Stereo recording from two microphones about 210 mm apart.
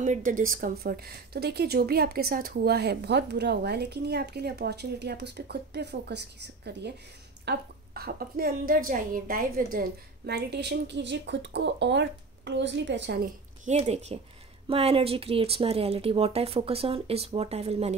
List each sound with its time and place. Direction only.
0.0 s a woman's voice: 35° right (ahead or behind); by 13.3 s 55° right (ahead or behind)
13.7 s speech: 30° right (ahead or behind)